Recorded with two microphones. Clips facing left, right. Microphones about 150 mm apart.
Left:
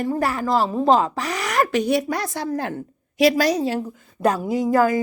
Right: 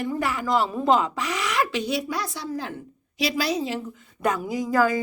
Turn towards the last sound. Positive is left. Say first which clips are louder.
# left 4 dB
turn(degrees=25)  # may be behind; listen again after turning